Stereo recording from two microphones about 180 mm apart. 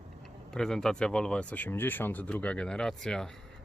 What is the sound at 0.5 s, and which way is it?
Speech, 5° left (ahead or behind).